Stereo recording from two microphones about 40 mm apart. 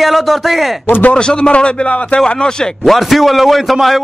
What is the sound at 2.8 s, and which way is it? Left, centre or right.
A man's voice, centre.